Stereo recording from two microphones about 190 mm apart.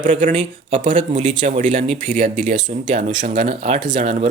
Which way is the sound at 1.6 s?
30° right (ahead or behind).